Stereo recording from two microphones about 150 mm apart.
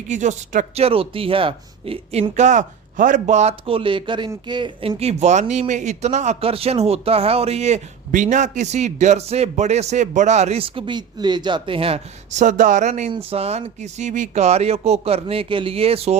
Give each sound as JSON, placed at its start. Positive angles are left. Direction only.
{"t": 0.1, "sound": "speech", "side_deg": -55}
{"t": 13.1, "sound": "speech", "side_deg": -40}